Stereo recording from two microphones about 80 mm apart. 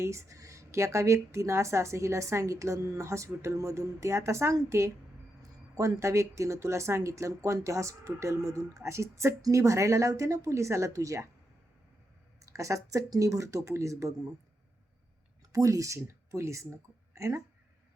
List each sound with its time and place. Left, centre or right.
0.0 s a woman's voice: right
12.4 s a woman's voice: right
15.5 s a woman's voice: right